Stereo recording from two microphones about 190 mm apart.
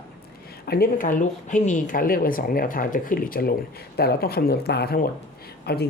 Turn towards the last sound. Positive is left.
turn(degrees=55)  # may be behind; listen again after turning